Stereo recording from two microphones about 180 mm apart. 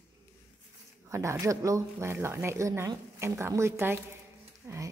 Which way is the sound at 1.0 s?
15° right (ahead or behind).